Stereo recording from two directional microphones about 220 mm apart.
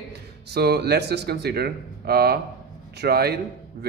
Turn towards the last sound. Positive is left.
turn(degrees=-50)  # may be behind; listen again after turning